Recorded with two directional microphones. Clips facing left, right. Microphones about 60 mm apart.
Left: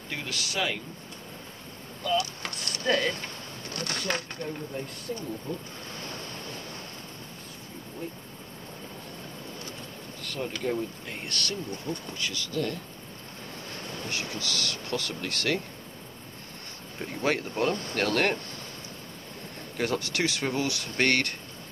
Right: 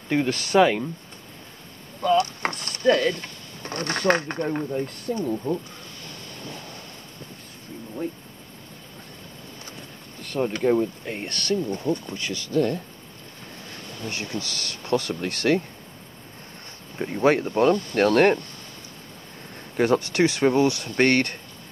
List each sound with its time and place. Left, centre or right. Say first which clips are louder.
0.1 s speech: right 13 dB; right
2.0 s a sound: right 8 dB; right
3.6 s speech: right 10 dB; right
10.2 s speech: right 9 dB; right
14.1 s speech: right 1 dB; right
17.0 s speech: right 8 dB; right
19.8 s speech: right 8 dB; right